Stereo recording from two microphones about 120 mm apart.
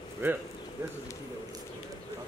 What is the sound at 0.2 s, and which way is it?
Speech, 20° right (ahead or behind).